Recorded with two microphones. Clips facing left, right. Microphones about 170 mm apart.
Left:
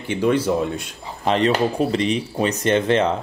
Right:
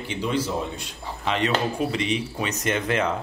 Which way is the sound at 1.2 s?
35° left (ahead or behind).